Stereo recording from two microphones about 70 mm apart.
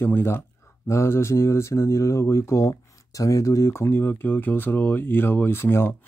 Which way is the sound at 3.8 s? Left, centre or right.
Left.